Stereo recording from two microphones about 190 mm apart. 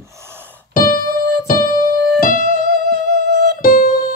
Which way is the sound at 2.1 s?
50° left (ahead or behind).